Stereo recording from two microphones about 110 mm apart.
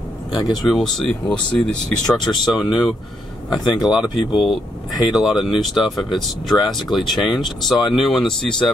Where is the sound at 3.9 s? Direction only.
5° right (ahead or behind).